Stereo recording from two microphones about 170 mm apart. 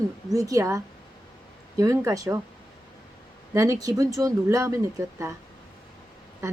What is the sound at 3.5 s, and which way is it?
A woman's voice, 20° right (ahead or behind).